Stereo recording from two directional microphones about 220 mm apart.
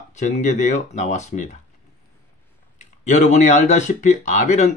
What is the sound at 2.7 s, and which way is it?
Speech, 35° left (ahead or behind).